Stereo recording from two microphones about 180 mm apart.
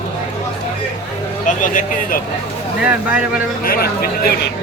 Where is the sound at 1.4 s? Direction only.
45° left (ahead or behind).